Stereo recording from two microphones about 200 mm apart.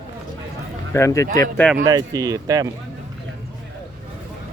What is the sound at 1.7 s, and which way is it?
Speech, 15° right (ahead or behind).